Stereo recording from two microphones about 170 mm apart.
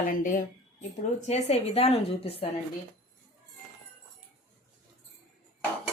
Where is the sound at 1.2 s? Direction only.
40° left (ahead or behind).